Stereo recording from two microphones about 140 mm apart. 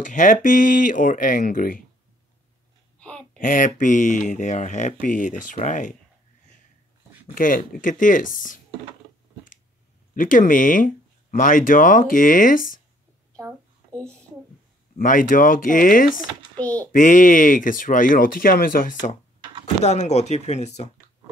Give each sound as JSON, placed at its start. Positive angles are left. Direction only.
{"t": 0.0, "sound": "speech", "side_deg": 65}
{"t": 3.0, "sound": "a sound", "side_deg": 5}
{"t": 3.3, "sound": "speech", "side_deg": 75}
{"t": 7.1, "sound": "a sound", "side_deg": -10}
{"t": 7.3, "sound": "speech", "side_deg": 80}
{"t": 10.1, "sound": "speech", "side_deg": 75}
{"t": 15.0, "sound": "speech", "side_deg": 80}
{"t": 16.5, "sound": "a child's voice", "side_deg": 10}
{"t": 16.9, "sound": "speech", "side_deg": 70}
{"t": 19.6, "sound": "speech", "side_deg": 55}